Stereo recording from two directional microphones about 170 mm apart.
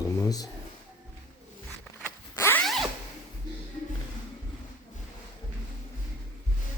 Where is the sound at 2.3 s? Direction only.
15° left (ahead or behind).